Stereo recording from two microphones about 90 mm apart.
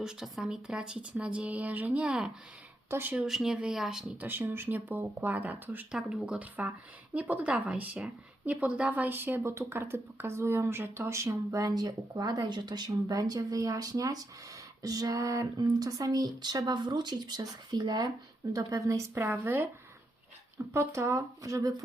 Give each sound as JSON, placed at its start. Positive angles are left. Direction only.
{"t": 0.0, "sound": "speech", "side_deg": -5}
{"t": 2.9, "sound": "speech", "side_deg": -25}
{"t": 3.2, "sound": "speech", "side_deg": -5}
{"t": 4.2, "sound": "speech", "side_deg": -25}
{"t": 18.5, "sound": "speech", "side_deg": -35}